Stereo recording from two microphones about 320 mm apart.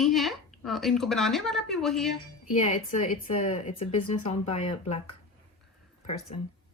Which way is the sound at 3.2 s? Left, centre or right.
Left.